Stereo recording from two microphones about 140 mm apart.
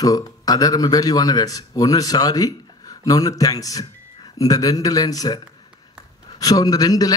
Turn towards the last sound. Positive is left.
turn(degrees=25)  # may be behind; listen again after turning